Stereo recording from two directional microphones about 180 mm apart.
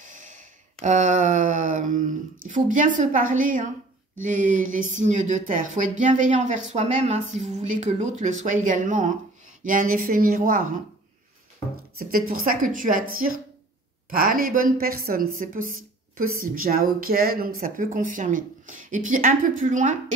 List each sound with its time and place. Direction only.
0.0 s a sound: 45° right (ahead or behind)
4.2 s a woman's voice: 45° right (ahead or behind)
12.0 s a woman's voice: 55° right (ahead or behind)